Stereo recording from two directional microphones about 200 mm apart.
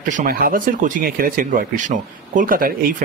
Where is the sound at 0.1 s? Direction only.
45° right (ahead or behind).